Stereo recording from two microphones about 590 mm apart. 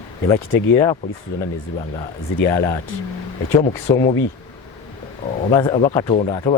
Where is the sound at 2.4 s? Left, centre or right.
Centre.